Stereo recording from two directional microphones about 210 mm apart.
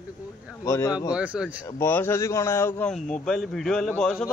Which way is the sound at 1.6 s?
10° left (ahead or behind).